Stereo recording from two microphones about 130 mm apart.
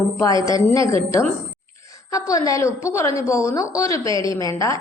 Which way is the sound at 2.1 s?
25° left (ahead or behind).